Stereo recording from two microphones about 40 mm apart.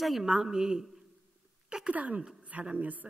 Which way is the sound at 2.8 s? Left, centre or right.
Right.